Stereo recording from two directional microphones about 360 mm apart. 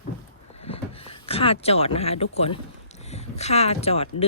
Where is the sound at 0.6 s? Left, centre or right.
Centre.